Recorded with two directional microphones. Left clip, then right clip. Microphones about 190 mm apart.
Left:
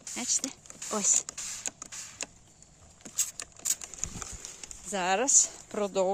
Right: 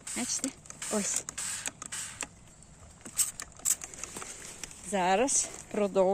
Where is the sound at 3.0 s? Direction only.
35° left (ahead or behind).